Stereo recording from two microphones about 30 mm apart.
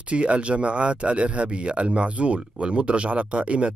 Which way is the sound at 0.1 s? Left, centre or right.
Right.